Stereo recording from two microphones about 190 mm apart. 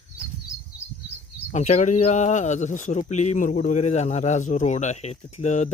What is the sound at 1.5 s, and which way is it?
Speech, 40° left (ahead or behind).